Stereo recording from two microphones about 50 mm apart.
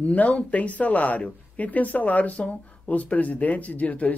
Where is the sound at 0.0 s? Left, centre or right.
Left.